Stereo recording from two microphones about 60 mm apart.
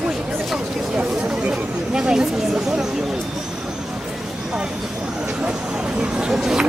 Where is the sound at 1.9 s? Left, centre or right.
Centre.